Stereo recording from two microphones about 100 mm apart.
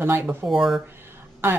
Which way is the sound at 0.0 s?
20° right (ahead or behind).